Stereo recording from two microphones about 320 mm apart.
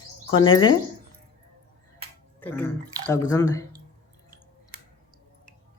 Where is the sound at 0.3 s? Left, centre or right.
Centre.